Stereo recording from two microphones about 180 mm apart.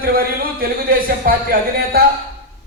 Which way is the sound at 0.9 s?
55° right (ahead or behind).